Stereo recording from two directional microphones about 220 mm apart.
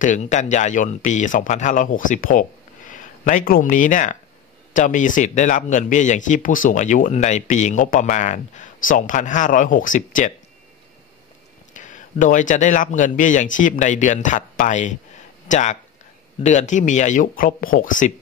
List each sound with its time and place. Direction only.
0.0 s speech: 35° left (ahead or behind)
11.7 s speech: 35° left (ahead or behind)